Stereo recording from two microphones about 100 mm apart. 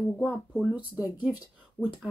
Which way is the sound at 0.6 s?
15° right (ahead or behind).